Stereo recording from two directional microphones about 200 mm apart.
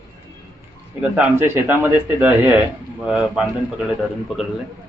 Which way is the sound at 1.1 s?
10° right (ahead or behind).